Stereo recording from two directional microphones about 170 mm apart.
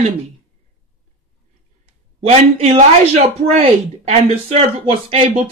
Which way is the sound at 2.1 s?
35° right (ahead or behind).